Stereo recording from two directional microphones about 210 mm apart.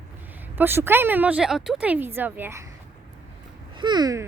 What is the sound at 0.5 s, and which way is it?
A woman's voice, 10° right (ahead or behind).